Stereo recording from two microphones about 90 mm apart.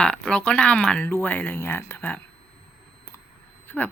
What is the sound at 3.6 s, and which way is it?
Speech, 20° left (ahead or behind).